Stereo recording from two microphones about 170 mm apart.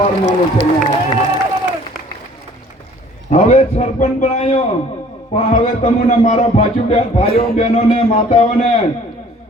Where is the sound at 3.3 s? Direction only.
40° left (ahead or behind).